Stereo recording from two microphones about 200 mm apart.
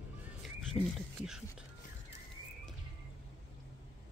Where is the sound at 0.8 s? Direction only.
15° right (ahead or behind).